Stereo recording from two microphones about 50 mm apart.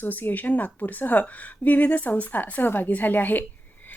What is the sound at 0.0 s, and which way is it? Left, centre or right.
A woman's voice, left.